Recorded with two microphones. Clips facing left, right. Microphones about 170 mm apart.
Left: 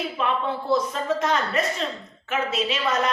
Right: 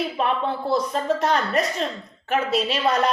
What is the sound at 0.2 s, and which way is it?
Speech, 45° right (ahead or behind).